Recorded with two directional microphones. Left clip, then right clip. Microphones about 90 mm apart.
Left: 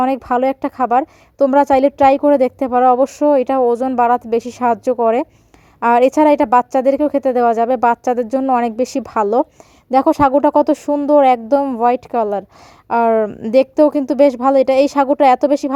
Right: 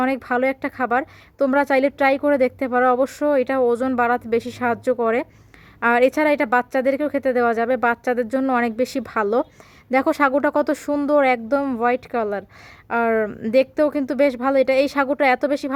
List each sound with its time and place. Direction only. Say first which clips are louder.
0.0 s a woman's voice: left 5 dB; 40° left (ahead or behind)
12.9 s speech: left 6 dB; 60° left (ahead or behind)
13.2 s a woman's voice: left 5 dB; 30° left (ahead or behind)
13.5 s a woman's voice: left 6 dB; 50° left (ahead or behind)